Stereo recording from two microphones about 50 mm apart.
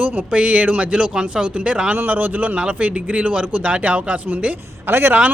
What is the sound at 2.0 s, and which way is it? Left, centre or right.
Speech, right.